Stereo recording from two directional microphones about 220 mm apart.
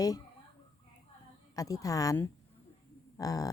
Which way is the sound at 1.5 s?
15° left (ahead or behind).